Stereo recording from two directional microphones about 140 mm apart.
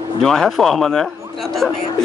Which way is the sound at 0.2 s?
5° left (ahead or behind).